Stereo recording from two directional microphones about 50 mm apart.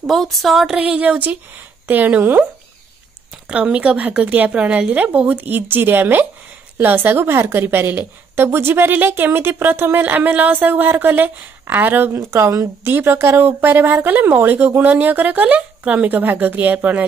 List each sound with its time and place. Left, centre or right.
0.0 s speech: centre
0.7 s speech: right
3.4 s a woman's voice: right
8.9 s a woman's voice: right
10.0 s speech: right
12.1 s speech: right
12.8 s a woman's voice: right